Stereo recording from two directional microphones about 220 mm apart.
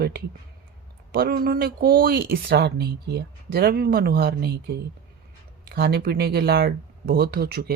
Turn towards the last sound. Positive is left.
turn(degrees=-45)  # may be behind; listen again after turning